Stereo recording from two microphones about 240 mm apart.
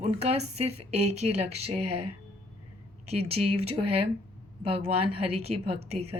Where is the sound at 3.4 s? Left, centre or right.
Right.